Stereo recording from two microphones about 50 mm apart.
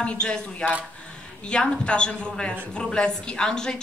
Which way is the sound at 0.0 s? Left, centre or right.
Centre.